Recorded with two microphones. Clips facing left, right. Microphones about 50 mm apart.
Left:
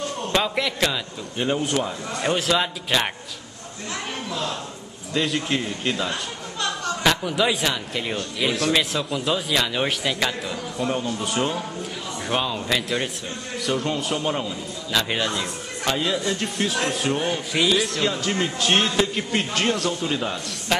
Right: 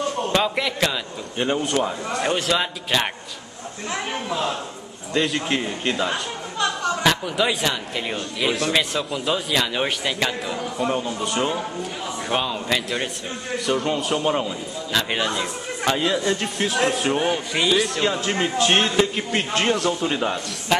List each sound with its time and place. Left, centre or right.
0.2 s a man's voice: centre
3.9 s a man's voice: centre
5.1 s a man's voice: centre